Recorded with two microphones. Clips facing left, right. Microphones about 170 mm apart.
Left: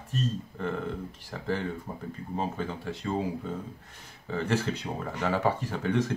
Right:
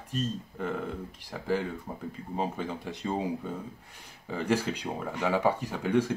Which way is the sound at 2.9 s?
20° right (ahead or behind).